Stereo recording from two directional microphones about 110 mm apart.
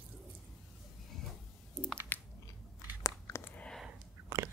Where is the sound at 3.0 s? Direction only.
30° left (ahead or behind).